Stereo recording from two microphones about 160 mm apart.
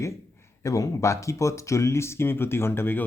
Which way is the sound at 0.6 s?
20° left (ahead or behind).